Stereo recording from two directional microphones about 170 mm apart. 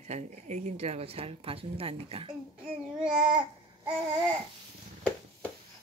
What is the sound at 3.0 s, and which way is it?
Babbling, 5° right (ahead or behind).